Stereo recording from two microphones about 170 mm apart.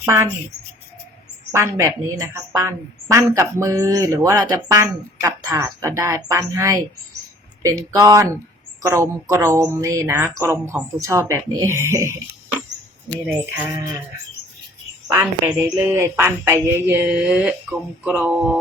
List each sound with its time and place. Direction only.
0.0 s speech: 15° right (ahead or behind)
1.5 s a woman's voice: 15° right (ahead or behind)
15.0 s a woman's voice: 10° right (ahead or behind)